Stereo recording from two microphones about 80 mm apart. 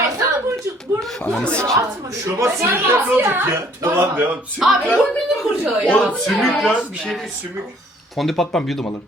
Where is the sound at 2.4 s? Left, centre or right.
Right.